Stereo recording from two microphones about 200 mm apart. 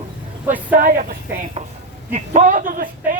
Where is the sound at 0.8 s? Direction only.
45° right (ahead or behind).